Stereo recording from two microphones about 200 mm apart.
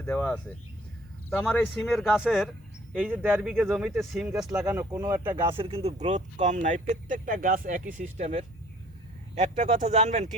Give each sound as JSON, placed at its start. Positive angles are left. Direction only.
{"t": 0.0, "sound": "speech", "side_deg": 10}
{"t": 4.6, "sound": "speech", "side_deg": -15}
{"t": 5.5, "sound": "speech", "side_deg": -30}
{"t": 9.3, "sound": "speech", "side_deg": -35}